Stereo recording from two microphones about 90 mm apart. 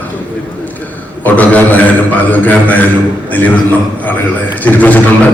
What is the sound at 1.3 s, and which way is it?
A man's voice, 20° left (ahead or behind).